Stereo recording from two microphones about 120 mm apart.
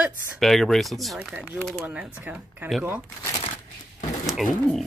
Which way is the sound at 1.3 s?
15° right (ahead or behind).